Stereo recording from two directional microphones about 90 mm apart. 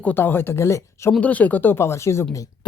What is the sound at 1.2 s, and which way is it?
Speech, 15° left (ahead or behind).